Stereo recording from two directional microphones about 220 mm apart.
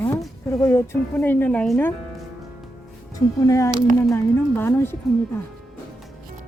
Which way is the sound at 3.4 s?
15° left (ahead or behind).